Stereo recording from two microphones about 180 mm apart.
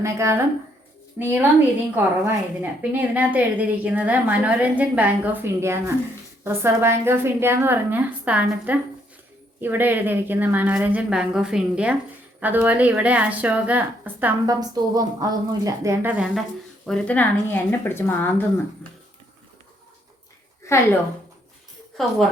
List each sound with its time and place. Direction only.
0.0 s a woman's voice: 15° right (ahead or behind)
14.5 s a woman's voice: 20° right (ahead or behind); by 18.9 s 10° left (ahead or behind)
22.0 s speech: centre (ahead or behind)